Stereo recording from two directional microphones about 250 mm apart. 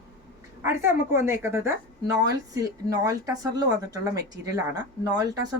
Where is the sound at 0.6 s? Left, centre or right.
Centre.